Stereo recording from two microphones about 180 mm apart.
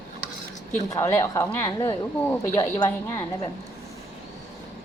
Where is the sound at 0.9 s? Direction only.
15° left (ahead or behind).